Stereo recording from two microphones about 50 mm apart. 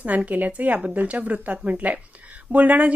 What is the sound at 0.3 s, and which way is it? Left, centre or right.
A woman's voice, right.